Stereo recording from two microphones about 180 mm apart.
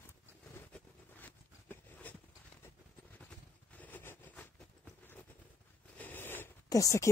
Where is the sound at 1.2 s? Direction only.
10° left (ahead or behind).